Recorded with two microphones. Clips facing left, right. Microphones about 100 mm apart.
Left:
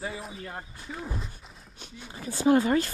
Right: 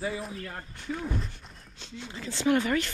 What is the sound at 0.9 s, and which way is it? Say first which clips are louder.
Speech: right 5 dB; centre (ahead or behind).